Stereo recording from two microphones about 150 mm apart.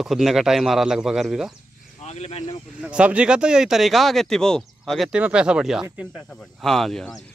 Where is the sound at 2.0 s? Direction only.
45° left (ahead or behind).